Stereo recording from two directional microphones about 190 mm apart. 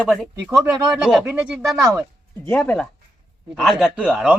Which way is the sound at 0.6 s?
15° right (ahead or behind).